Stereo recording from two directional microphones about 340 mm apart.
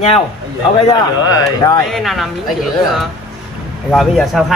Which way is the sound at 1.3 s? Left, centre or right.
Centre.